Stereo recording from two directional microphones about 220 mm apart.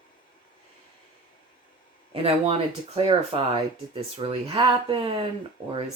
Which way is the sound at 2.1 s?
25° right (ahead or behind).